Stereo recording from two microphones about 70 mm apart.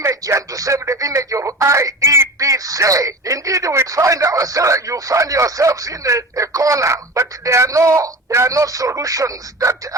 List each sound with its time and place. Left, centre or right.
0.0 s speech: right